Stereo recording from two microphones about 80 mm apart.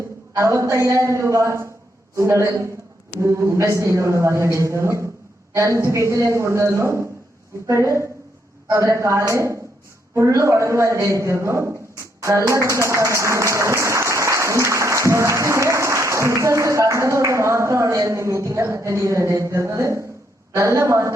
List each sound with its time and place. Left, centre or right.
0.3 s a woman's voice: right